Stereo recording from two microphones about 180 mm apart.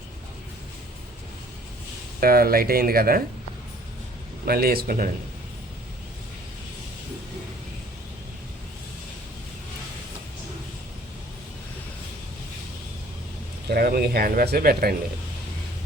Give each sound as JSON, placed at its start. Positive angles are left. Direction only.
{"t": 2.2, "sound": "speech", "side_deg": -55}
{"t": 4.4, "sound": "speech", "side_deg": -55}
{"t": 13.7, "sound": "speech", "side_deg": -55}